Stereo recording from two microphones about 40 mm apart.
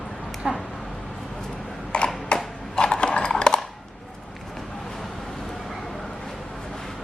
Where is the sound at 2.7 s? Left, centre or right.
Left.